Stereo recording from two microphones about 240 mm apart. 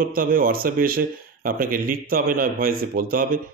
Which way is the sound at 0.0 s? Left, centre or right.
Right.